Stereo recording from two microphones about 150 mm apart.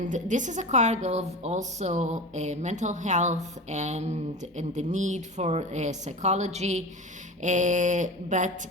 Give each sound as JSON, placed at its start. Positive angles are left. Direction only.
{"t": 0.0, "sound": "a woman's voice", "side_deg": -55}
{"t": 7.4, "sound": "mantra", "side_deg": -55}